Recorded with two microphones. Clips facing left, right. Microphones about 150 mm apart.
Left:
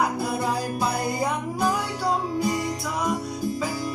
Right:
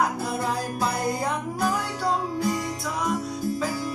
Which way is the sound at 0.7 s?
5° left (ahead or behind).